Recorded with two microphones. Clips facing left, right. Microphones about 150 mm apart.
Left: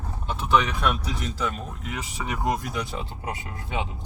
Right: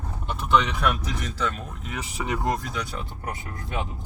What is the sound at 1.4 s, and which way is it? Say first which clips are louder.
Speech: right 1 dB; centre (ahead or behind).